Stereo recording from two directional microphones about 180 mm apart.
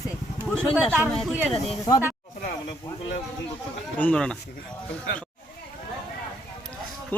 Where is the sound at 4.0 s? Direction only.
5° left (ahead or behind).